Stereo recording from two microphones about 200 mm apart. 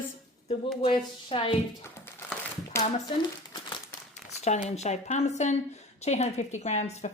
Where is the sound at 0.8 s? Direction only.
25° left (ahead or behind).